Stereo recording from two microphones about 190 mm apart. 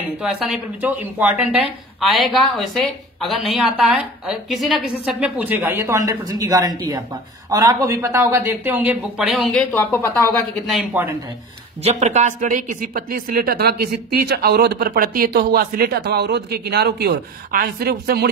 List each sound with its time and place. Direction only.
0.2 s speech: 5° right (ahead or behind)
11.8 s speech: 35° right (ahead or behind); by 18.3 s 55° right (ahead or behind)